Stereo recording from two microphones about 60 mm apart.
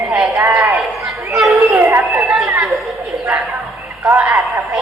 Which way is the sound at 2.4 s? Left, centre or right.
Right.